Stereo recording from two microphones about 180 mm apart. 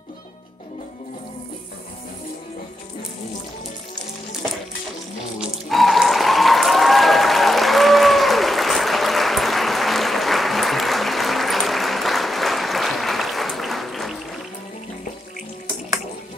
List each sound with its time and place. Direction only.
5.4 s applause: centre (ahead or behind)